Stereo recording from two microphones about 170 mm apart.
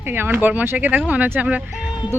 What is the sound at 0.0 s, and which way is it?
Speech, 10° right (ahead or behind).